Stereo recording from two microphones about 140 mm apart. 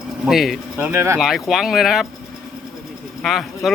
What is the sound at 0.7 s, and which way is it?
Speech, 15° right (ahead or behind).